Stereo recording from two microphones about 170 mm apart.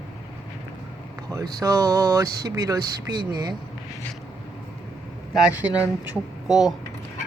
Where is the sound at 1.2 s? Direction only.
20° right (ahead or behind).